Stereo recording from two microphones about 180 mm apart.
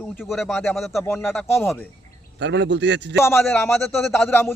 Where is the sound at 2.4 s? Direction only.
80° right.